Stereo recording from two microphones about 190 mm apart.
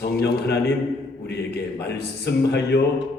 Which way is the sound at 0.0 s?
60° left (ahead or behind).